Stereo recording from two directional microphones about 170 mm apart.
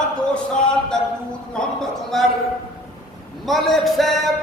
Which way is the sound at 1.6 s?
5° left (ahead or behind).